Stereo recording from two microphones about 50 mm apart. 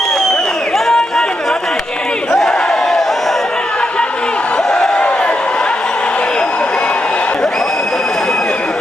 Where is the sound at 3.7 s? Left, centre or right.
Centre.